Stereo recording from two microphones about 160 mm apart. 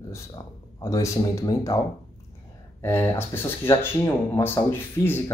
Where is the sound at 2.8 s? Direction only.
15° left (ahead or behind).